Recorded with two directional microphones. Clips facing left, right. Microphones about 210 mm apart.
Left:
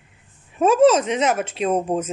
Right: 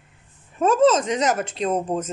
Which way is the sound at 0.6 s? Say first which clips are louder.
Left 2 dB; 10° left (ahead or behind).